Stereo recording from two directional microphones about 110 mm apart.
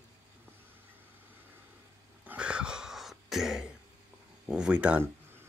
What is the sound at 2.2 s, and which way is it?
Throat clearing, 10° right (ahead or behind).